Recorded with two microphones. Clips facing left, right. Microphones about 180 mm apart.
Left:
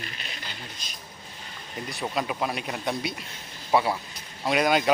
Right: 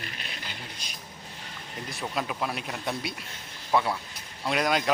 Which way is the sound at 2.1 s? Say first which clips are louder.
Left 2 dB; 5° left (ahead or behind).